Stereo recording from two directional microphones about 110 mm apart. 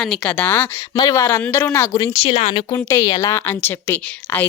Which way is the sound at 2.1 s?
60° left (ahead or behind).